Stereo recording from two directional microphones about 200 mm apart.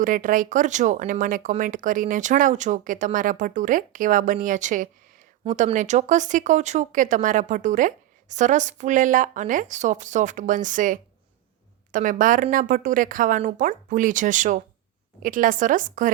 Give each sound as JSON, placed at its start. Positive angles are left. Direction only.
{"t": 0.0, "sound": "speech", "side_deg": -45}